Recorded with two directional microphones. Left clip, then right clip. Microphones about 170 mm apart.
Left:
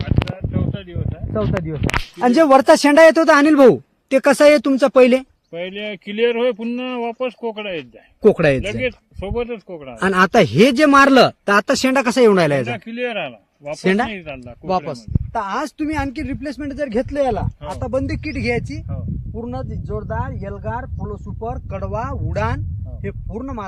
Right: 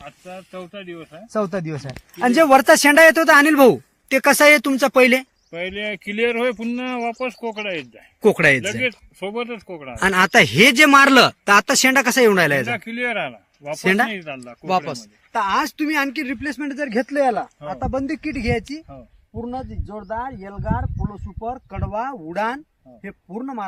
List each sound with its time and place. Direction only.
0.7 s speech: 25° left (ahead or behind)
2.1 s a man's voice: 50° left (ahead or behind)
12.6 s speech: 35° left (ahead or behind)
13.7 s speech: 60° left (ahead or behind)
14.1 s speech: 35° left (ahead or behind)
14.7 s speech: 70° left (ahead or behind)
19.9 s speech: 30° left (ahead or behind)